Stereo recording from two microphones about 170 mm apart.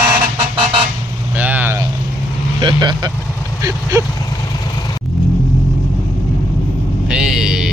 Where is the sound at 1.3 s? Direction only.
10° right (ahead or behind).